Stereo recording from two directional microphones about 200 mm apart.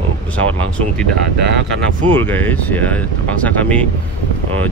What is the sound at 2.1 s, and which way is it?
Speech, 10° left (ahead or behind).